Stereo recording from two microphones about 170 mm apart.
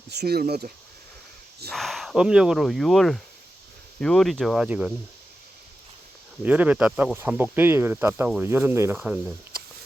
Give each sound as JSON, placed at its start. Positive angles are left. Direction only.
{"t": 0.1, "sound": "speech", "side_deg": -70}
{"t": 1.7, "sound": "speech", "side_deg": 0}
{"t": 6.4, "sound": "speech", "side_deg": -10}